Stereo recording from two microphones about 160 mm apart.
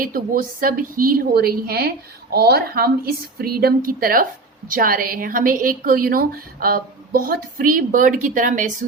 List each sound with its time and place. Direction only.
0.0 s a woman's voice: 60° right (ahead or behind)